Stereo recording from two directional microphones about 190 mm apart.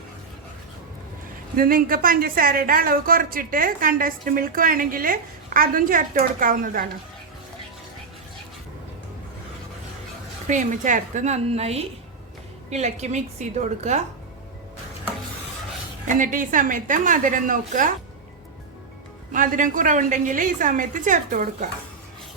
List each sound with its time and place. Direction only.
1.5 s a woman's voice: 50° right (ahead or behind)
10.4 s a woman's voice: 40° right (ahead or behind)
16.0 s a woman's voice: 45° right (ahead or behind)
19.3 s a woman's voice: 45° right (ahead or behind)